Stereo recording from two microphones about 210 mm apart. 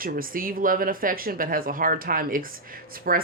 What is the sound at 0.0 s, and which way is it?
Speech, 40° right (ahead or behind).